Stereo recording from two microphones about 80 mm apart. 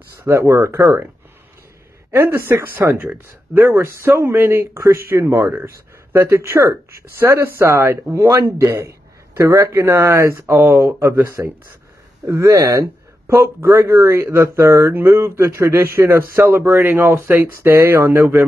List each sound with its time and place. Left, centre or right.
0.2 s speech: right
2.0 s a man's voice: right
10.3 s a man's voice: right